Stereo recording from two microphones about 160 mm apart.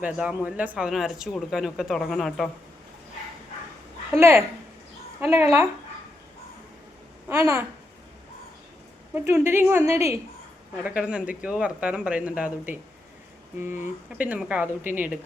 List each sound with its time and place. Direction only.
0.0 s speech: 10° right (ahead or behind)
4.1 s speech: 15° right (ahead or behind)
7.3 s speech: 15° right (ahead or behind)
9.1 s speech: 15° right (ahead or behind)
13.7 s speech: 50° left (ahead or behind)
14.2 s speech: 5° right (ahead or behind)